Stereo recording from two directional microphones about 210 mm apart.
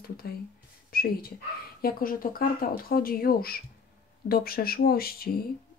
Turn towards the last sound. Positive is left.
turn(degrees=45)  # may be behind; listen again after turning